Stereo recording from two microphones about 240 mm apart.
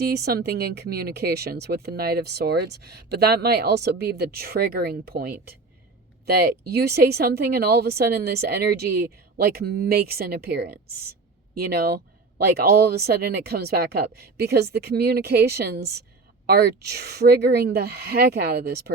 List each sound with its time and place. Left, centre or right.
0.1 s speech: right
6.7 s speech: right